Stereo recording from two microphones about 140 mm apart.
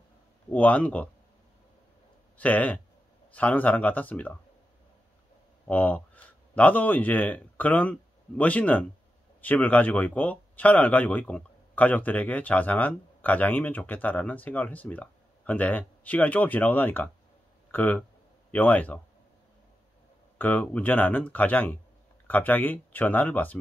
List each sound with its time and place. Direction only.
0.5 s speech: 10° left (ahead or behind)
2.3 s speech: 10° left (ahead or behind)
5.7 s speech: 10° left (ahead or behind)
20.3 s speech: 10° left (ahead or behind)